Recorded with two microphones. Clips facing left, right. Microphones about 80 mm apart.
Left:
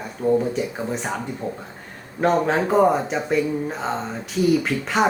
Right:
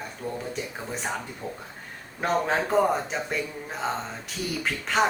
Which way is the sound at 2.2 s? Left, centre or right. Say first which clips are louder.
Left 6 dB; centre.